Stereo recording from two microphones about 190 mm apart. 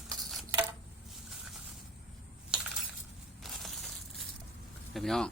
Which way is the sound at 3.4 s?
Centre (ahead or behind).